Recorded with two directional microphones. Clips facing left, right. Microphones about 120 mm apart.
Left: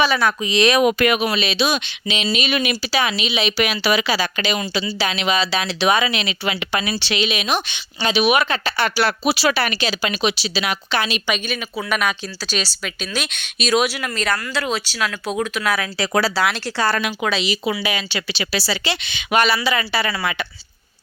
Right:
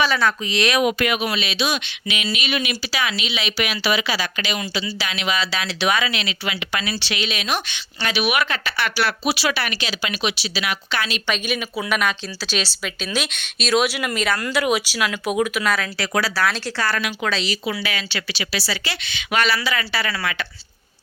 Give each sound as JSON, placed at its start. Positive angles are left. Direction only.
{"t": 0.0, "sound": "speech", "side_deg": 15}
{"t": 0.8, "sound": "speech", "side_deg": 50}
{"t": 1.3, "sound": "speech", "side_deg": 35}
{"t": 3.6, "sound": "a woman's voice", "side_deg": 40}
{"t": 11.4, "sound": "speech", "side_deg": -5}
{"t": 15.6, "sound": "speech", "side_deg": 5}
{"t": 16.3, "sound": "a woman's voice", "side_deg": 15}
{"t": 17.2, "sound": "speech", "side_deg": 15}
{"t": 18.3, "sound": "a woman's voice", "side_deg": 30}